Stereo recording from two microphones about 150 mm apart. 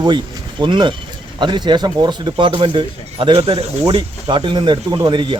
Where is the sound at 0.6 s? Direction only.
30° right (ahead or behind).